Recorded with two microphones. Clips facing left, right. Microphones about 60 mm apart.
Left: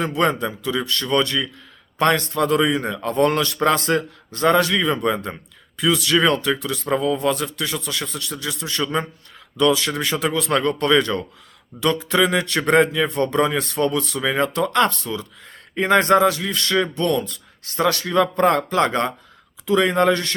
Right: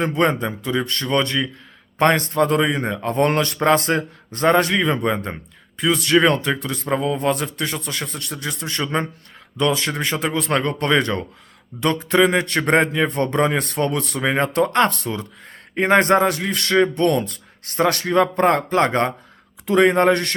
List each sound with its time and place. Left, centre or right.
0.0 s a man's voice: right
16.9 s a man's voice: right